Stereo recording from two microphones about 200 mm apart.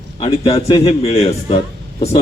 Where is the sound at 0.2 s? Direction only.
30° left (ahead or behind).